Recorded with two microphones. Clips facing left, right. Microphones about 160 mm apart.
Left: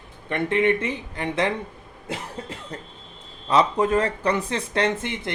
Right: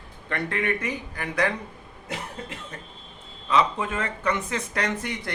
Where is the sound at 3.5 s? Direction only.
35° left (ahead or behind).